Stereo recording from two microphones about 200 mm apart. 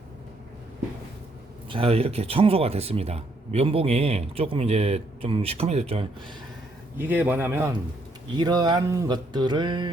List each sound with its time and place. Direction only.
1.7 s speech: 30° right (ahead or behind)
6.9 s a man's voice: 10° right (ahead or behind)
8.3 s speech: 20° right (ahead or behind)